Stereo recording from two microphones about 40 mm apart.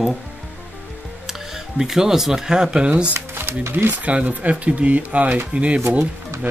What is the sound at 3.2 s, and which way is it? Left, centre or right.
Crumpling, right.